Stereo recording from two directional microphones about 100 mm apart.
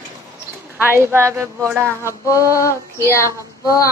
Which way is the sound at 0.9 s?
25° right (ahead or behind).